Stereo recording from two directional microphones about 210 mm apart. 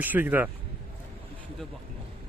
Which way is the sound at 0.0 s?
10° right (ahead or behind).